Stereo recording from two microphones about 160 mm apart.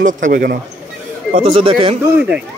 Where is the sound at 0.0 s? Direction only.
55° right (ahead or behind).